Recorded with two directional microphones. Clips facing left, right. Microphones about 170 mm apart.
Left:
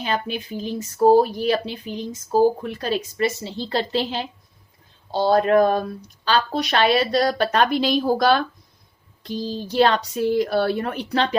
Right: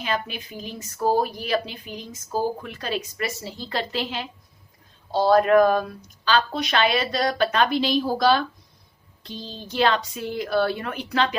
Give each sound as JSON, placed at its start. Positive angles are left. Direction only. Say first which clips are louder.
{"t": 0.0, "sound": "a woman's voice", "louder": "left 3 dB", "side_deg": 35}
{"t": 9.3, "sound": "speech", "louder": "left 9 dB", "side_deg": 5}
{"t": 9.6, "sound": "a woman's voice", "louder": "left 3 dB", "side_deg": 40}